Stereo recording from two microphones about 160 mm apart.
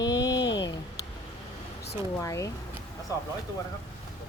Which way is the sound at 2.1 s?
20° left (ahead or behind).